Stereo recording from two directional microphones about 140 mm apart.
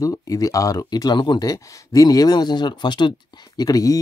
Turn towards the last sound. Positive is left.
turn(degrees=25)  # may be behind; listen again after turning